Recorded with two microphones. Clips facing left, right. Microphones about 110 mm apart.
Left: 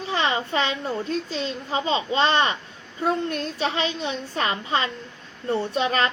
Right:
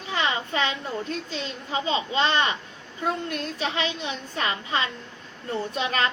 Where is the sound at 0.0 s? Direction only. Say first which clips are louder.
Left 3 dB; 30° left (ahead or behind).